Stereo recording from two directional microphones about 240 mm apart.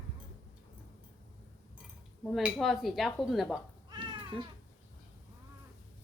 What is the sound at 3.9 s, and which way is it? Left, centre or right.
Cat, centre.